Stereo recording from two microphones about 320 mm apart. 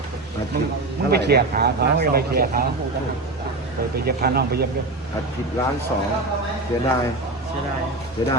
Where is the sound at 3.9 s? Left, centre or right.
Right.